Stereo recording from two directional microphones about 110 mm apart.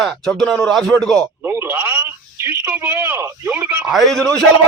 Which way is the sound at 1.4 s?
20° right (ahead or behind).